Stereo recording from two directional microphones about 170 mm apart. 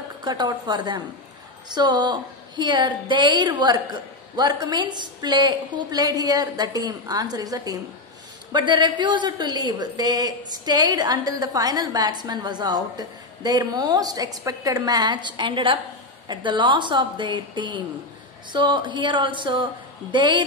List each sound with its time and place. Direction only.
0.2 s a woman's voice: 25° right (ahead or behind)